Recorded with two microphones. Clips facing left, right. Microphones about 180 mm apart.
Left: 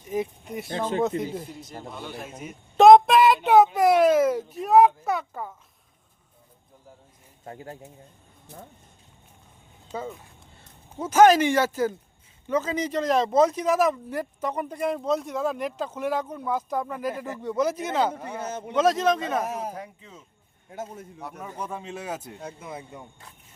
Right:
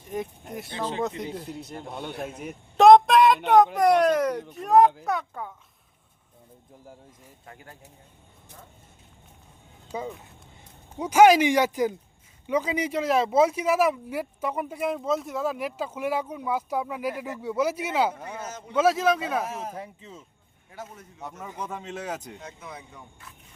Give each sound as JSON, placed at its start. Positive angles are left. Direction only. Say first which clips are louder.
{"t": 0.0, "sound": "speech", "louder": "left 4 dB", "side_deg": 0}
{"t": 0.7, "sound": "speech", "louder": "left 4 dB", "side_deg": 50}
{"t": 1.0, "sound": "speech", "louder": "left 4 dB", "side_deg": 0}
{"t": 1.5, "sound": "a man's voice", "louder": "right 4 dB", "side_deg": -65}
{"t": 1.9, "sound": "speech", "louder": "right 4 dB", "side_deg": 0}
{"t": 2.7, "sound": "a sound", "louder": "left 1 dB", "side_deg": 0}
{"t": 3.8, "sound": "speech", "louder": "left 2 dB", "side_deg": 5}
{"t": 7.4, "sound": "speech", "louder": "left 9 dB", "side_deg": 35}
{"t": 9.9, "sound": "speech", "louder": "even", "side_deg": -15}
{"t": 19.7, "sound": "speech", "louder": "even", "side_deg": -30}
{"t": 21.6, "sound": "speech", "louder": "even", "side_deg": 10}
{"t": 22.4, "sound": "speech", "louder": "left 4 dB", "side_deg": 30}